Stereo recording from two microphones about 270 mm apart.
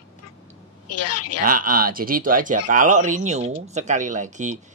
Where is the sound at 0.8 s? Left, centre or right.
Left.